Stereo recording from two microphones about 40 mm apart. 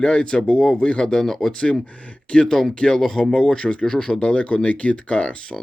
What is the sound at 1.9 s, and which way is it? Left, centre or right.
Speech, left.